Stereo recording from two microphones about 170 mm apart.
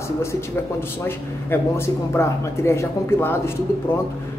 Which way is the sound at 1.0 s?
15° left (ahead or behind).